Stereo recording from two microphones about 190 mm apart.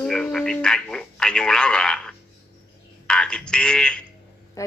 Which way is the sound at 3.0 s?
5° left (ahead or behind).